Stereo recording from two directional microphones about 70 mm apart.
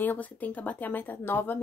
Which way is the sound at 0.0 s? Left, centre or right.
Left.